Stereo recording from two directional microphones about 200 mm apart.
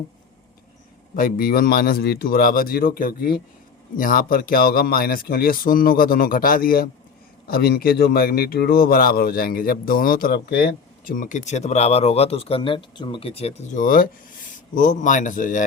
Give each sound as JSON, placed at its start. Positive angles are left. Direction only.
{"t": 1.1, "sound": "a man's voice", "side_deg": 45}